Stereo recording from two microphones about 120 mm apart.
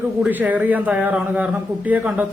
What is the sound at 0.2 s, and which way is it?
A man's voice, 15° right (ahead or behind).